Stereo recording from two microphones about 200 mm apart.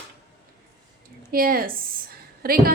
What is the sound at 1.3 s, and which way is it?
Speech, 45° right (ahead or behind).